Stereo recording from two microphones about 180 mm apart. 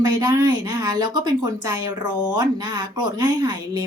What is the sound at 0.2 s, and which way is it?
Speech, 20° right (ahead or behind).